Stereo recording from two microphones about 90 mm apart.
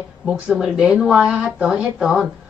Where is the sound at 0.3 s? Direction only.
10° right (ahead or behind).